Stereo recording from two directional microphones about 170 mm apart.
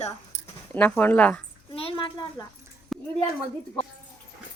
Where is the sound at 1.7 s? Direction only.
35° left (ahead or behind).